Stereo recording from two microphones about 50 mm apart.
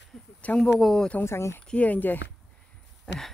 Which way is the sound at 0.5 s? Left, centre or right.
Centre.